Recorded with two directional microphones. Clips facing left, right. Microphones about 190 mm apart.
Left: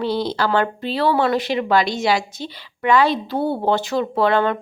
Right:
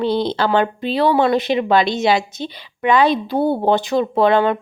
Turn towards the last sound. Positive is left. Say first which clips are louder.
# right 3 dB
turn(degrees=-20)  # may be behind; listen again after turning